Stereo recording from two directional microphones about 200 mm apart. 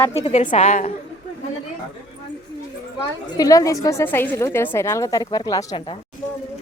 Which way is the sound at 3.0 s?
20° left (ahead or behind).